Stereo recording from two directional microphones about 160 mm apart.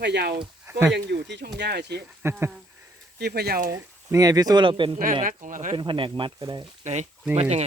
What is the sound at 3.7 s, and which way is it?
Speech, 20° right (ahead or behind).